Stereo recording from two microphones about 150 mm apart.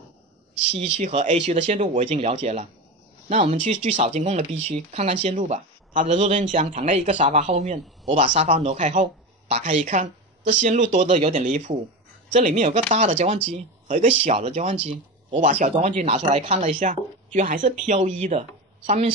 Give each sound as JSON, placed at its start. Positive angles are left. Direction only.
{"t": 0.7, "sound": "a woman's voice", "side_deg": -50}